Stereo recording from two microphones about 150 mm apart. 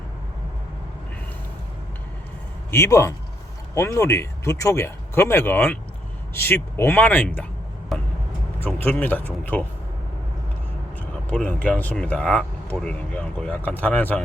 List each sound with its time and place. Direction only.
2.6 s speech: 20° left (ahead or behind)
7.9 s vehicle: centre (ahead or behind)
8.5 s speech: 10° left (ahead or behind)
11.0 s speech: 10° left (ahead or behind)